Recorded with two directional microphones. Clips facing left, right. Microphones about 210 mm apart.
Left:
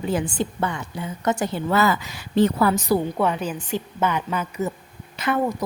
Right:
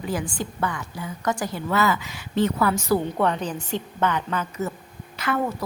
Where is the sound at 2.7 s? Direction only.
15° left (ahead or behind).